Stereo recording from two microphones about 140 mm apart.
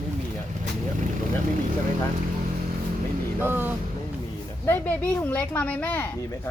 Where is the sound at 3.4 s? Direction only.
15° right (ahead or behind).